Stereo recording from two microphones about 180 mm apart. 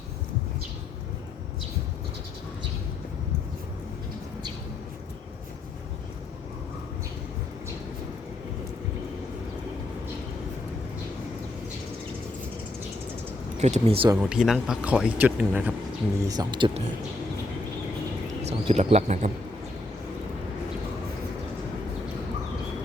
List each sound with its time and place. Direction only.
13.6 s speech: 40° right (ahead or behind)
14.2 s speech: 5° right (ahead or behind)
16.2 s speech: 20° right (ahead or behind)
18.4 s speech: 35° right (ahead or behind)